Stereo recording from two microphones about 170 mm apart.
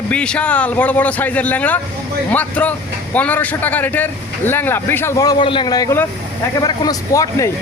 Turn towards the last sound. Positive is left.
turn(degrees=20)  # may be behind; listen again after turning